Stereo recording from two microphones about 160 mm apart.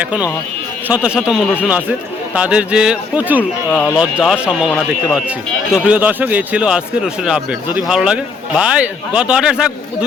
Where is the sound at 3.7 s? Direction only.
10° left (ahead or behind).